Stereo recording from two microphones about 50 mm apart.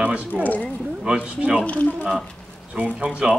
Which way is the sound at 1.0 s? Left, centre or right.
Right.